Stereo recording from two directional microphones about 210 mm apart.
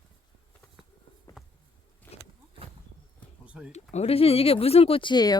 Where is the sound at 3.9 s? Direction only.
30° left (ahead or behind).